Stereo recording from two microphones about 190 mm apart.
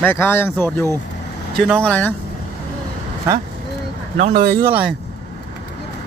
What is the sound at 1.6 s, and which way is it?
Speech, 5° left (ahead or behind).